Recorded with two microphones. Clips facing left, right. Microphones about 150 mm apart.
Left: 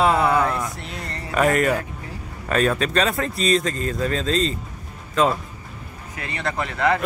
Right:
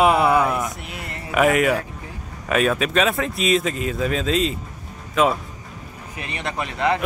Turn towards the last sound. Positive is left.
turn(degrees=-20)  # may be behind; listen again after turning